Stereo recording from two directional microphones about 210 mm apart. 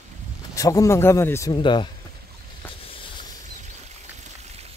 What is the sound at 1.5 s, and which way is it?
Speech, 25° left (ahead or behind).